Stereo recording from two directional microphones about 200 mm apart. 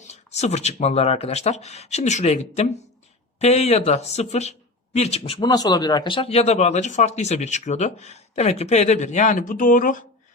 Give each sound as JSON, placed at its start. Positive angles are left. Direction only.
{"t": 0.0, "sound": "speech", "side_deg": 35}